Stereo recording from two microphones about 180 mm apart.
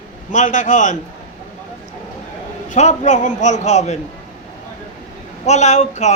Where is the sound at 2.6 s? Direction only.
40° left (ahead or behind).